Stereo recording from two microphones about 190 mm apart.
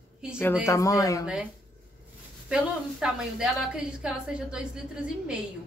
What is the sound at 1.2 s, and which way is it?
Speech, 5° right (ahead or behind).